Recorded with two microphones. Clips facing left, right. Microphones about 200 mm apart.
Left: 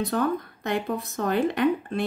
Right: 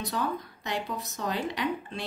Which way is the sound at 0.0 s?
55° left (ahead or behind).